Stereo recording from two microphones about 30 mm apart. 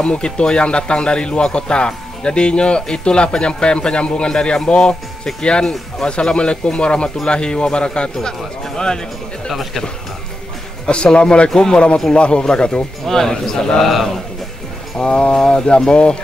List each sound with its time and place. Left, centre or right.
0.0 s a man's voice: left
9.5 s speech: centre
10.9 s speech: left
13.0 s a man's voice: centre
15.0 s speech: left
15.3 s a man's voice: left